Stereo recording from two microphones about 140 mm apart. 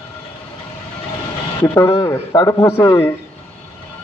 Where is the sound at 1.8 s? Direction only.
30° left (ahead or behind).